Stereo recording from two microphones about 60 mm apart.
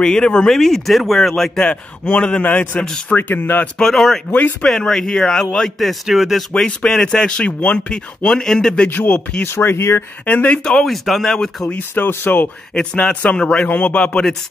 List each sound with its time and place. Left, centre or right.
0.0 s speech: centre; by 3.6 s left
3.7 s speech: centre
6.5 s speech: centre
8.9 s speech: left
9.4 s speech: left
10.2 s speech: left
10.6 s speech: centre
11.9 s speech: left
12.9 s speech: left